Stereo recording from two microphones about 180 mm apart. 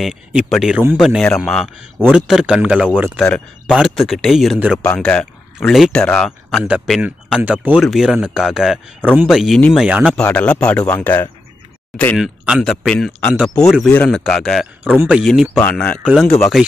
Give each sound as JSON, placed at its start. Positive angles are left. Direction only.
{"t": 0.0, "sound": "speech", "side_deg": 0}
{"t": 3.3, "sound": "speech", "side_deg": 5}
{"t": 9.8, "sound": "speech", "side_deg": -5}
{"t": 10.1, "sound": "speech", "side_deg": 5}
{"t": 12.2, "sound": "speech", "side_deg": -5}
{"t": 15.5, "sound": "speech", "side_deg": 5}
{"t": 16.0, "sound": "speech", "side_deg": -5}